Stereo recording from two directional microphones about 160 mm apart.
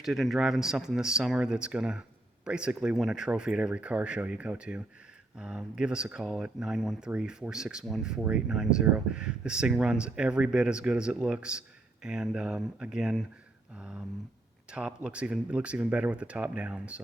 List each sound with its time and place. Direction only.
0.0 s speech: centre (ahead or behind)